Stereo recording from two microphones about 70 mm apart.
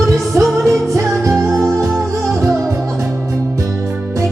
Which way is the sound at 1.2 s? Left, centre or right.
Right.